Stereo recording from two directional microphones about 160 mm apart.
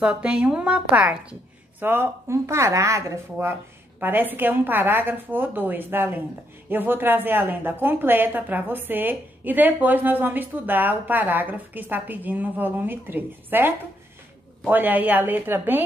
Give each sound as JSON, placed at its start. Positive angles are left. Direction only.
{"t": 0.0, "sound": "speech", "side_deg": -5}